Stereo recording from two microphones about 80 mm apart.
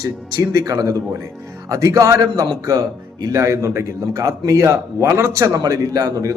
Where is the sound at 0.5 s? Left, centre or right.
Right.